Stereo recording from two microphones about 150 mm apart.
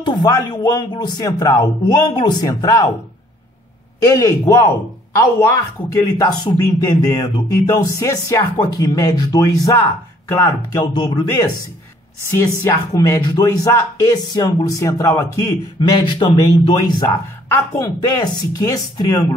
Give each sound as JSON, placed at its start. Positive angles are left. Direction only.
{"t": 0.0, "sound": "speech", "side_deg": 30}
{"t": 4.1, "sound": "speech", "side_deg": 20}
{"t": 12.6, "sound": "speech", "side_deg": 20}
{"t": 15.9, "sound": "speech", "side_deg": 30}